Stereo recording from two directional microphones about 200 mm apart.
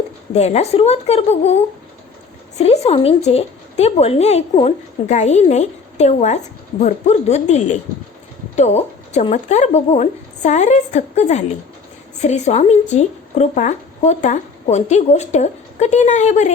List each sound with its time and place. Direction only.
0.3 s a woman's voice: 35° left (ahead or behind)
2.6 s a woman's voice: 30° left (ahead or behind)